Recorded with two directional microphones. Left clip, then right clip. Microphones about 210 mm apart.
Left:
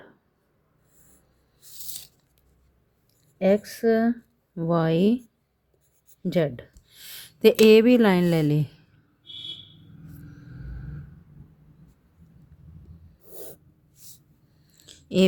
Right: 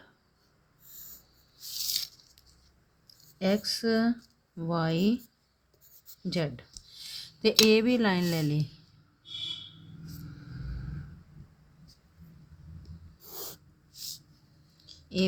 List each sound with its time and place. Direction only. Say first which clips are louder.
3.3 s speech: left 7 dB; 30° left (ahead or behind)
6.2 s a sound: left 8 dB; 35° left (ahead or behind)
7.6 s speech: left 7 dB; 40° left (ahead or behind)